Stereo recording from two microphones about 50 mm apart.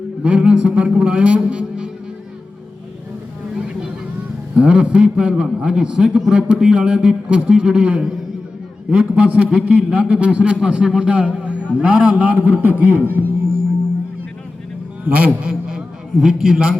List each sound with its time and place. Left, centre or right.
0.2 s a man's voice: right
4.5 s a man's voice: right
12.3 s a man's voice: right
15.0 s a man's voice: right
16.2 s a man's voice: centre